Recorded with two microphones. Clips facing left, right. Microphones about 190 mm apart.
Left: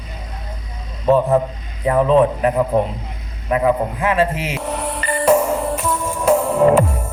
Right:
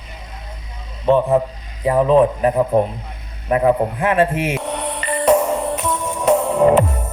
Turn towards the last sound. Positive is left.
turn(degrees=5)  # may be behind; listen again after turning